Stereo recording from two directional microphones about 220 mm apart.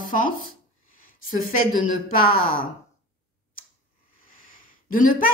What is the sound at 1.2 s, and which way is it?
Speech, 40° left (ahead or behind).